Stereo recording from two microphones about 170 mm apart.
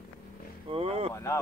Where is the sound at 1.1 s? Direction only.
15° left (ahead or behind).